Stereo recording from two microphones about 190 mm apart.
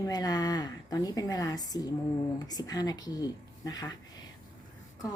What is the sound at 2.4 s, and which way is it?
Speech, 20° left (ahead or behind).